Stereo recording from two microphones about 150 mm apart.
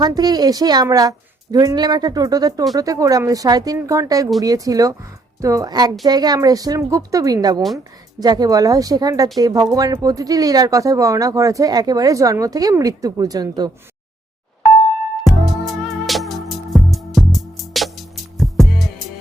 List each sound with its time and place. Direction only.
0.0 s speech: 25° right (ahead or behind)
15.2 s music: centre (ahead or behind)